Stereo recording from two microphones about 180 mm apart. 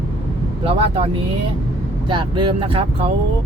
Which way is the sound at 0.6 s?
30° right (ahead or behind).